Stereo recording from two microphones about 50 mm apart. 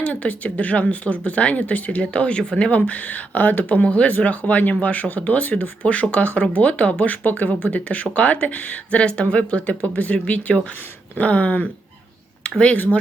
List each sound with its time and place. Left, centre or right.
0.0 s speech: left
12.4 s a sound: left
12.7 s speech: left